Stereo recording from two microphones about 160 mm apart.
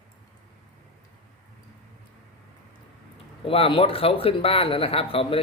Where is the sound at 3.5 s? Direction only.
35° left (ahead or behind).